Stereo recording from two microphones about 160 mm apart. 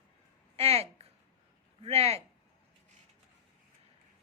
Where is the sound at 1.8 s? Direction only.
40° right (ahead or behind).